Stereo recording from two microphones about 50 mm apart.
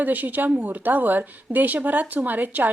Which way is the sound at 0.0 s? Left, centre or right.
Right.